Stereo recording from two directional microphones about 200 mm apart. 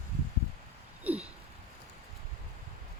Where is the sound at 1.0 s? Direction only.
10° right (ahead or behind).